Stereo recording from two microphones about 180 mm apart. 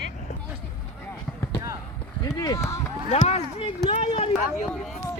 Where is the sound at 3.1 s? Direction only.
35° left (ahead or behind).